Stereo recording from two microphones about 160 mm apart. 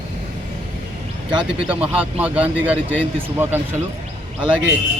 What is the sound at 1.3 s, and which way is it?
Speech, 30° right (ahead or behind).